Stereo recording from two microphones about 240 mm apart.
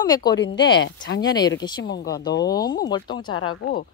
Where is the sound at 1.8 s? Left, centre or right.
Left.